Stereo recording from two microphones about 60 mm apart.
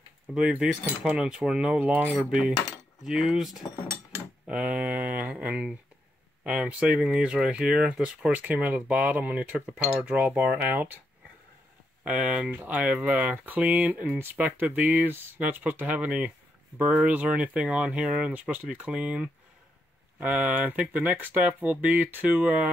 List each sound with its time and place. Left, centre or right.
0.3 s speech: centre
3.0 s speech: centre
8.3 s speech: right
12.0 s speech: centre
12.4 s speech: right
18.3 s speech: right